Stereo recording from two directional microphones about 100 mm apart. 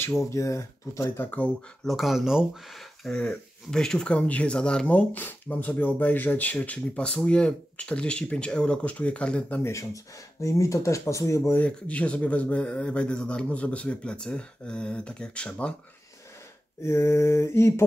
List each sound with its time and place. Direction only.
0.2 s speech: 30° left (ahead or behind)
1.2 s mantra: 20° left (ahead or behind)
1.9 s speech: centre (ahead or behind)
3.0 s speech: 5° left (ahead or behind)
9.6 s mantra: 30° left (ahead or behind)
10.4 s speech: 30° left (ahead or behind)
11.6 s speech: 15° left (ahead or behind)
16.8 s mantra: 30° left (ahead or behind)